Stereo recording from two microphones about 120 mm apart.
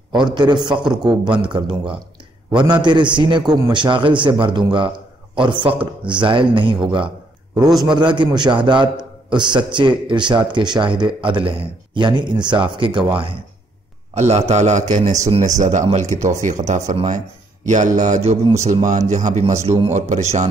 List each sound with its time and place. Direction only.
0.1 s a man's voice: 40° right (ahead or behind)
14.1 s a man's voice: 65° right (ahead or behind); by 15.1 s 85° right
15.2 s speech: 65° right (ahead or behind)
15.6 s a man's voice: 75° right (ahead or behind)
17.6 s speech: 90° right; by 18.8 s 70° right (ahead or behind)
18.9 s speech: 80° right
19.9 s a man's voice: 70° right (ahead or behind)